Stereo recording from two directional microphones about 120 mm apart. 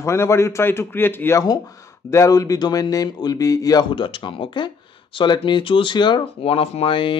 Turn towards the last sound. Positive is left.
turn(degrees=50)  # may be behind; listen again after turning